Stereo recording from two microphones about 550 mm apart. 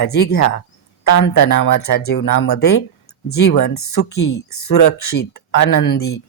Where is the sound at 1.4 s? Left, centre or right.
Left.